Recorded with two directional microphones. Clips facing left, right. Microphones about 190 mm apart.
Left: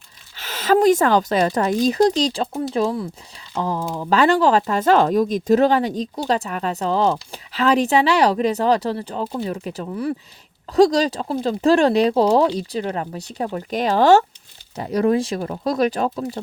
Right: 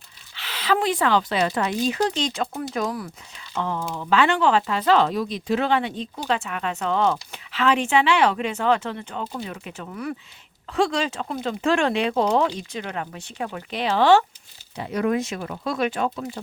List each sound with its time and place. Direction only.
0.3 s speech: 45° left (ahead or behind)